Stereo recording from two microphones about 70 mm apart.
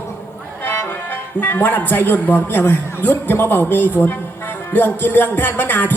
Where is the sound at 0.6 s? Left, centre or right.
Left.